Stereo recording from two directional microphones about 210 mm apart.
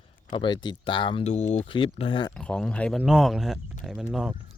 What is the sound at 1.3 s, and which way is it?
Speech, 35° left (ahead or behind).